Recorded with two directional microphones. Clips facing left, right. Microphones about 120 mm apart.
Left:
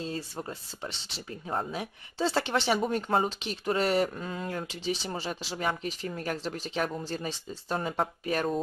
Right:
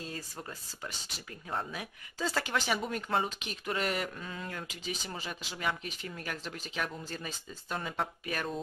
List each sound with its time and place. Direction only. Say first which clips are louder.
0.0 s speech: left 7 dB; 25° left (ahead or behind)